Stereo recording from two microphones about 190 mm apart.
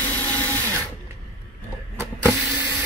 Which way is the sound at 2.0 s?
10° right (ahead or behind).